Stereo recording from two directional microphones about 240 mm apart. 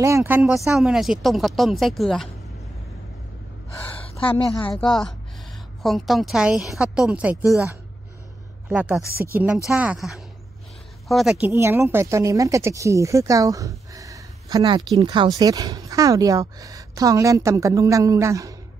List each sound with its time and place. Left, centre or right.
0.0 s a woman's voice: centre
5.8 s a woman's voice: centre
8.6 s a woman's voice: centre
9.1 s speech: right
9.7 s a woman's voice: centre